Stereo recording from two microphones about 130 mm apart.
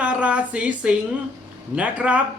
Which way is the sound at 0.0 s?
10° right (ahead or behind).